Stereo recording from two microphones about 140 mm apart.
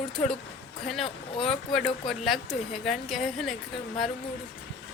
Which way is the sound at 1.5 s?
Centre (ahead or behind).